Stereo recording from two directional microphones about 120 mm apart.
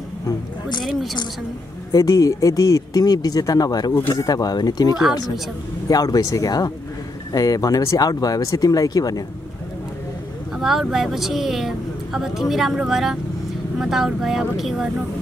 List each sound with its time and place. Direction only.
0.3 s a sound: 35° left (ahead or behind)
1.9 s speech: 25° left (ahead or behind)
10.6 s speech: centre (ahead or behind)